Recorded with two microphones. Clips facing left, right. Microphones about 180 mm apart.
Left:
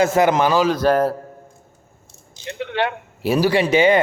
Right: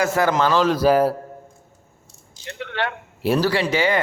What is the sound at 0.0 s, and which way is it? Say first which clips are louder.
Speech: left 3 dB; 20° left (ahead or behind).